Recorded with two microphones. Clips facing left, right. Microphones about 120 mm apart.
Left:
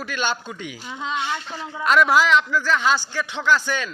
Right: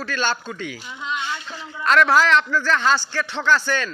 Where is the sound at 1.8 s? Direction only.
10° left (ahead or behind).